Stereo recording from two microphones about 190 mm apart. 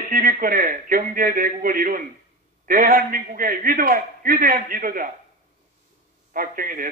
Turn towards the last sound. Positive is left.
turn(degrees=-45)  # may be behind; listen again after turning